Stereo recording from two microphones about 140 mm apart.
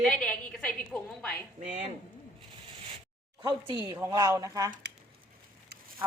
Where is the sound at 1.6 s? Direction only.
55° right (ahead or behind).